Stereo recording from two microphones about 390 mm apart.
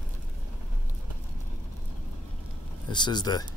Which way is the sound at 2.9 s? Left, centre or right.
Centre.